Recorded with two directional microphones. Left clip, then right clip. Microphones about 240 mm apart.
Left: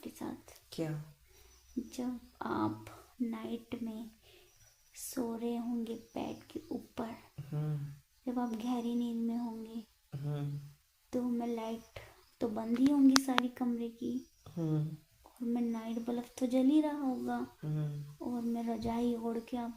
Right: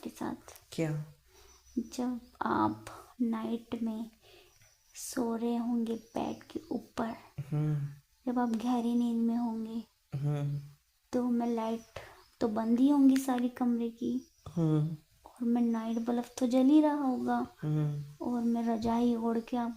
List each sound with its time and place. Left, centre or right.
0.2 s a child's voice: centre
8.2 s a child's voice: centre
14.4 s speech: right
15.5 s a child's voice: centre